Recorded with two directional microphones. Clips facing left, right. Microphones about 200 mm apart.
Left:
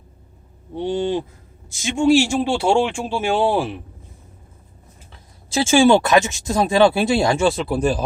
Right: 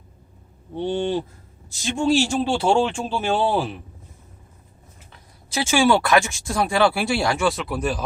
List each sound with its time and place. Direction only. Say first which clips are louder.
0.8 s speech: left 2 dB; 10° left (ahead or behind)
5.5 s speech: left 5 dB; 25° left (ahead or behind)